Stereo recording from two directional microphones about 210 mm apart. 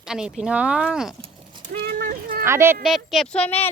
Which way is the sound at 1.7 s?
45° right (ahead or behind).